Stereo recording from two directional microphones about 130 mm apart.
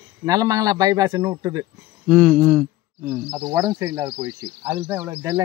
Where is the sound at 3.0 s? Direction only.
10° right (ahead or behind).